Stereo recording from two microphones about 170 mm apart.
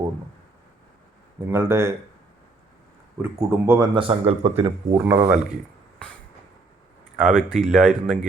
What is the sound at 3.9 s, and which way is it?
Speech, 35° right (ahead or behind).